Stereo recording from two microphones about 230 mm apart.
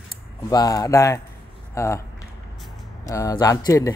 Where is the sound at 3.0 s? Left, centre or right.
Centre.